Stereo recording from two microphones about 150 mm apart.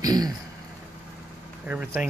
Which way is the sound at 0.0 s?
25° right (ahead or behind).